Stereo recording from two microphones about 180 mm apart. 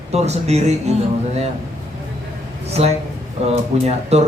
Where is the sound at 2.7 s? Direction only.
35° right (ahead or behind).